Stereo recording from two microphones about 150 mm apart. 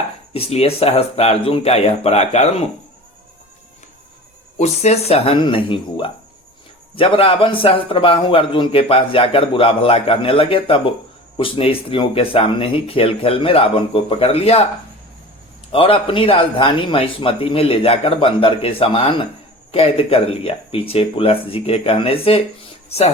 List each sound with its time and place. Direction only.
0.3 s speech: 40° left (ahead or behind)
4.5 s a man's voice: 45° left (ahead or behind)
15.7 s a man's voice: 35° left (ahead or behind)